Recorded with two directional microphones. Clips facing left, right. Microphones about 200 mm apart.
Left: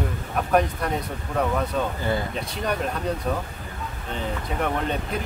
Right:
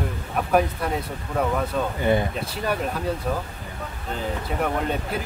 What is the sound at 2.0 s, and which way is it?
Speech, 20° right (ahead or behind).